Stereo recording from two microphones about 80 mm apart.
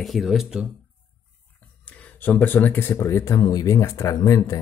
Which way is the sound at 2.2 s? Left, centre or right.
Left.